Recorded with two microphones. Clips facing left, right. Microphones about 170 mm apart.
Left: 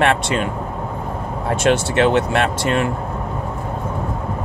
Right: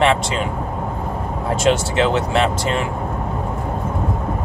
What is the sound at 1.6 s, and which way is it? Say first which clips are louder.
Speech: left 1 dB; 60° left (ahead or behind).